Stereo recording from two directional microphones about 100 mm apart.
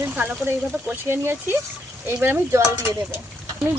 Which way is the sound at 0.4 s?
25° right (ahead or behind).